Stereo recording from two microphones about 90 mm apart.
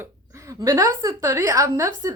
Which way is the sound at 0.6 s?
40° right (ahead or behind).